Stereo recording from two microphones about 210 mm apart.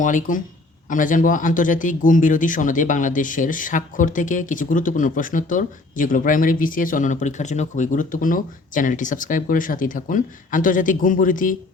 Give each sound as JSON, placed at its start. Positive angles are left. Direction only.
{"t": 0.0, "sound": "speech", "side_deg": 35}